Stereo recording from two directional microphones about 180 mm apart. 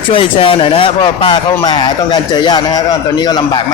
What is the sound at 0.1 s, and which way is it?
Speech, 30° left (ahead or behind).